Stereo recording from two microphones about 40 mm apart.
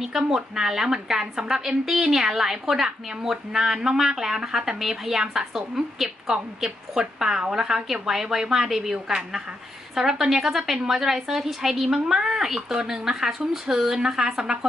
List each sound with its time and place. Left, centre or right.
0.0 s a woman's voice: centre
8.9 s a woman's voice: right
9.9 s a woman's voice: centre